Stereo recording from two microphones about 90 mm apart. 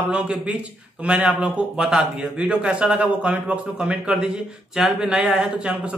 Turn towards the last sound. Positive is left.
turn(degrees=-10)  # may be behind; listen again after turning